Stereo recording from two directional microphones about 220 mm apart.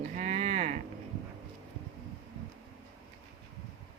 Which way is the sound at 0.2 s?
30° right (ahead or behind).